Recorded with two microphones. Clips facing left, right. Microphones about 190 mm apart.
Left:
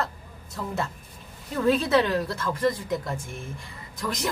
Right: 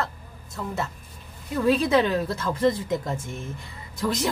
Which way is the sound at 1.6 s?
10° right (ahead or behind).